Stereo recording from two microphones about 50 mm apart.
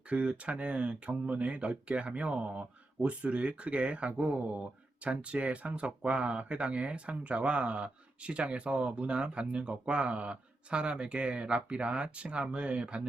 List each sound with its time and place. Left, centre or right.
0.1 s speech: right